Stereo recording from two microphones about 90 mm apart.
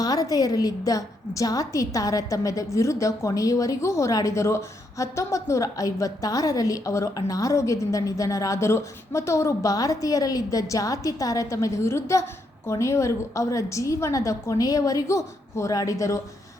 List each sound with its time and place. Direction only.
0.0 s a woman's voice: 45° left (ahead or behind)